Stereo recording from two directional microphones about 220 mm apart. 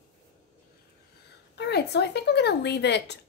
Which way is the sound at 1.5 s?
50° left (ahead or behind).